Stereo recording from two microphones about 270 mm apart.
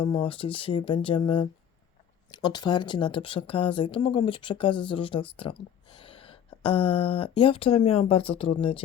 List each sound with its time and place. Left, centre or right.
0.0 s speech: centre